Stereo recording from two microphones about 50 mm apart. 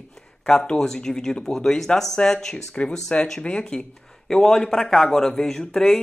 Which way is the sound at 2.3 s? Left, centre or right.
Centre.